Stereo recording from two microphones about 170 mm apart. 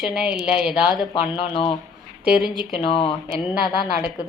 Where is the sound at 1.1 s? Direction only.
30° left (ahead or behind).